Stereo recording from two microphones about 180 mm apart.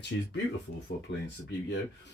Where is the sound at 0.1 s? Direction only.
65° left (ahead or behind).